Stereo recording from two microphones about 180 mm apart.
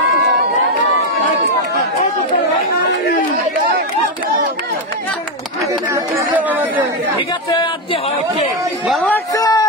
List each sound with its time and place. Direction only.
5.7 s chatter: 15° right (ahead or behind)
7.5 s speech: 25° left (ahead or behind)
8.8 s chatter: centre (ahead or behind)
9.1 s a sound: 20° left (ahead or behind)